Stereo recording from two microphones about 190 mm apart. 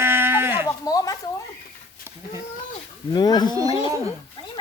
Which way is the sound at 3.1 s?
20° left (ahead or behind).